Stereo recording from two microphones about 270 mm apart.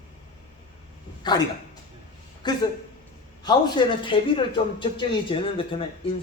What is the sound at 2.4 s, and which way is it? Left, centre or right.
A man's voice, centre.